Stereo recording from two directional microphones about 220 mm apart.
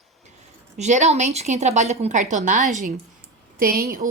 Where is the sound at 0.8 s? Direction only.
30° right (ahead or behind).